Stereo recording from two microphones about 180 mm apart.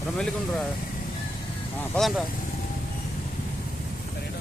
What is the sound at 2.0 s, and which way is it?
Speech, centre (ahead or behind).